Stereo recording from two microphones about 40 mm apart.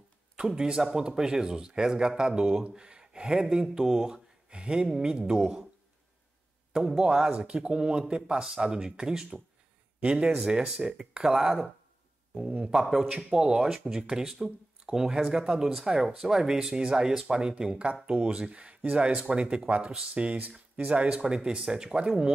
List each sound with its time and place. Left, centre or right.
0.4 s speech: centre
7.0 s speech: centre
10.0 s speech: right
10.4 s speech: centre
12.4 s speech: right
12.8 s speech: centre; by 20.3 s right
20.4 s speech: right
21.1 s speech: right